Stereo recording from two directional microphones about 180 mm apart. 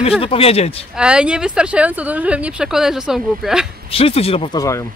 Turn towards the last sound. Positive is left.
turn(degrees=15)  # may be behind; listen again after turning